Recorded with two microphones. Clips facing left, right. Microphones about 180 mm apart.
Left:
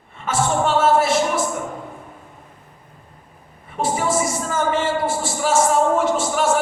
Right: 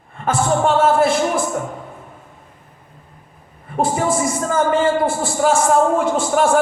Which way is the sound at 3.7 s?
50° right (ahead or behind).